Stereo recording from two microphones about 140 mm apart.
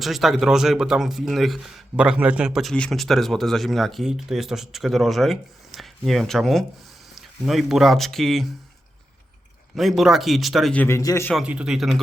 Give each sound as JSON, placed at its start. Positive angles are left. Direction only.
{"t": 0.0, "sound": "a man's voice", "side_deg": 0}
{"t": 9.7, "sound": "a man's voice", "side_deg": 0}
{"t": 10.8, "sound": "speech", "side_deg": 20}
{"t": 11.3, "sound": "a man's voice", "side_deg": -5}